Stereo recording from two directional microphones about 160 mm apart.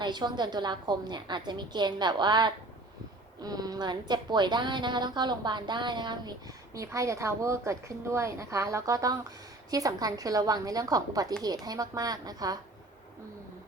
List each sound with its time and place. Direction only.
0.0 s a woman's voice: 25° right (ahead or behind)